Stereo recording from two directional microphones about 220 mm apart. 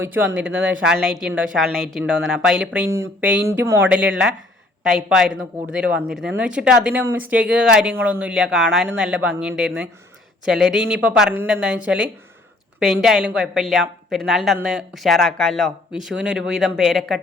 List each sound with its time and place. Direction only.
0.0 s speech: 10° right (ahead or behind)